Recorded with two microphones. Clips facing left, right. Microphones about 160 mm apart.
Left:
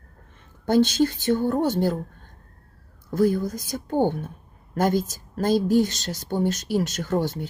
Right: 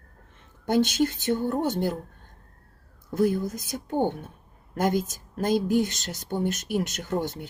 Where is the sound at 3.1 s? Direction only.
20° right (ahead or behind).